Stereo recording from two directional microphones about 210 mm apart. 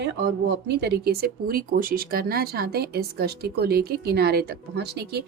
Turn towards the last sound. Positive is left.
turn(degrees=-50)  # may be behind; listen again after turning